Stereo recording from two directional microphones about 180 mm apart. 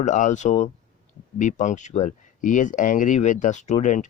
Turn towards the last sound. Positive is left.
turn(degrees=40)  # may be behind; listen again after turning